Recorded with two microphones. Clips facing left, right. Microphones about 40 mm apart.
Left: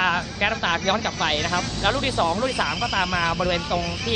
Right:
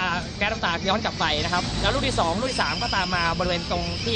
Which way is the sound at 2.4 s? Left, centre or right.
Left.